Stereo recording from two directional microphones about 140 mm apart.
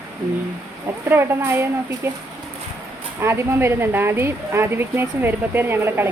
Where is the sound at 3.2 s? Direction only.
15° right (ahead or behind).